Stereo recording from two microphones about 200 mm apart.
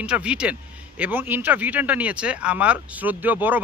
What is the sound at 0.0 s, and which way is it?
Speech, 5° right (ahead or behind).